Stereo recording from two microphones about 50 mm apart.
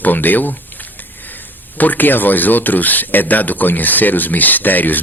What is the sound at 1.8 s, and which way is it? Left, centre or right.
Speech, left.